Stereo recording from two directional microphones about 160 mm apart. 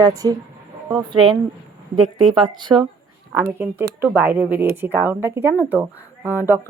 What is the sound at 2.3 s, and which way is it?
Speech, 30° right (ahead or behind).